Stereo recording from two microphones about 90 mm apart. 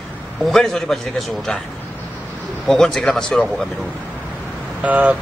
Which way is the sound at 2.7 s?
5° left (ahead or behind).